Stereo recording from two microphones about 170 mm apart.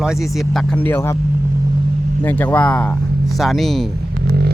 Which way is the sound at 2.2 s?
10° left (ahead or behind).